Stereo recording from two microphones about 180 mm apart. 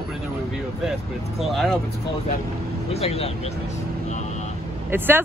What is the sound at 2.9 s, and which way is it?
Speech, 35° left (ahead or behind).